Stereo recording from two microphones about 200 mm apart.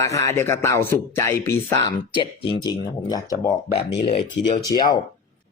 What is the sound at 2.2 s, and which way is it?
Speech, 25° left (ahead or behind).